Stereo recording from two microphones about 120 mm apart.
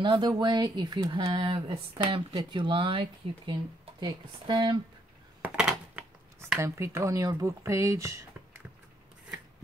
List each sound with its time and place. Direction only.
0.0 s speech: 40° right (ahead or behind)
5.4 s a sound: 10° right (ahead or behind)
6.6 s speech: 25° right (ahead or behind)